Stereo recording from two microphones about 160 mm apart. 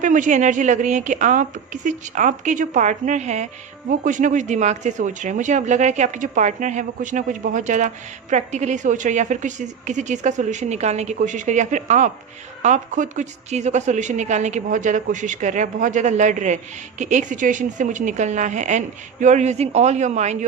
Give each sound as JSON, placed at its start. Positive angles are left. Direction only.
{"t": 0.0, "sound": "speech", "side_deg": -50}